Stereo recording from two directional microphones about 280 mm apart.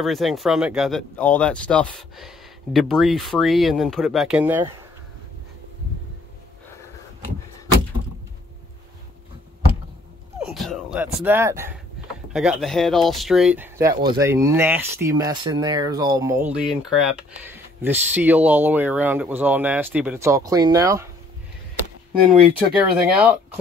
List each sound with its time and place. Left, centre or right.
0.0 s speech: centre
10.5 s speech: centre
22.8 s speech: centre